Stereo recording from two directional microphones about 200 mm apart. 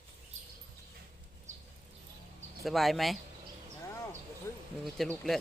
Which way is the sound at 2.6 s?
Centre (ahead or behind).